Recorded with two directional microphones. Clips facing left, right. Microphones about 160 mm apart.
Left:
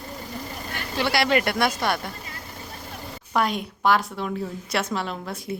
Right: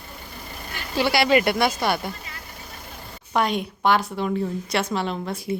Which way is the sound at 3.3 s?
Centre (ahead or behind).